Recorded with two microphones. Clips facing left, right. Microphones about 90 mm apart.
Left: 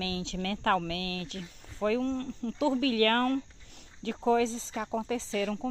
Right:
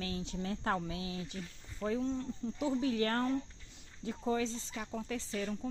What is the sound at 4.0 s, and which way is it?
A woman's voice, 85° left.